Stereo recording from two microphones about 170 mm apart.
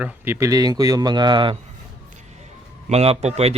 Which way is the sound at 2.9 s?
35° right (ahead or behind).